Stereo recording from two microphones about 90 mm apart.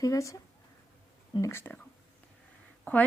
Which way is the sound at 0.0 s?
40° left (ahead or behind).